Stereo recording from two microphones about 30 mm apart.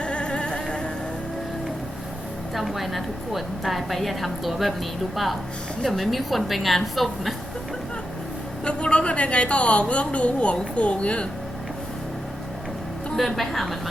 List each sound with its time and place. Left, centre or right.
0.0 s a sound: left
2.6 s a woman's voice: centre
8.6 s a woman's voice: left
13.1 s a woman's voice: centre